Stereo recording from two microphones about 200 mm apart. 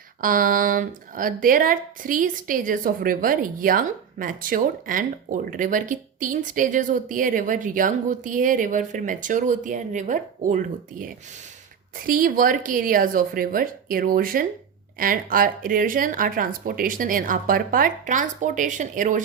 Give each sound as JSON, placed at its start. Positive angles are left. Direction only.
{"t": 0.2, "sound": "speech", "side_deg": -45}